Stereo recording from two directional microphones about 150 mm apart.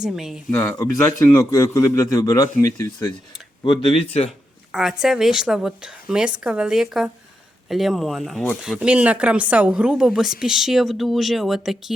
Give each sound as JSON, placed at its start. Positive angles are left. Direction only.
{"t": 0.0, "sound": "speech", "side_deg": -5}
{"t": 0.8, "sound": "a man's voice", "side_deg": 20}
{"t": 3.6, "sound": "speech", "side_deg": 35}
{"t": 4.3, "sound": "a woman's voice", "side_deg": 0}